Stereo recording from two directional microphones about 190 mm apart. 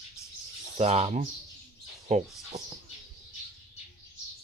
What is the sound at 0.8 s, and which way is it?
Speech, 35° right (ahead or behind).